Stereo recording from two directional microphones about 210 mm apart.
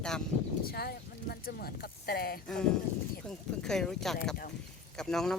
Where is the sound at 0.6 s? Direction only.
45° left (ahead or behind).